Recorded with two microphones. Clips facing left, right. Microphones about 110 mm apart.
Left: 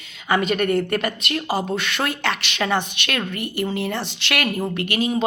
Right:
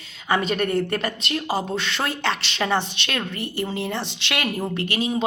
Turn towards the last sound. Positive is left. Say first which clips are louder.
# left 2 dB
turn(degrees=-25)  # may be behind; listen again after turning